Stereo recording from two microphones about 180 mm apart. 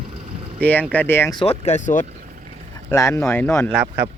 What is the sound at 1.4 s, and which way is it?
Speech, 35° left (ahead or behind).